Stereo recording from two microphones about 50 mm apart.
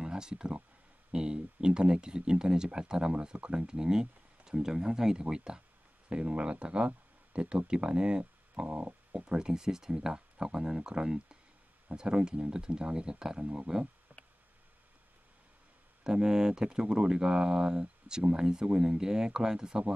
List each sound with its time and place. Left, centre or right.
0.0 s speech: centre
8.6 s a sound: right
9.2 s speech: centre
16.0 s speech: centre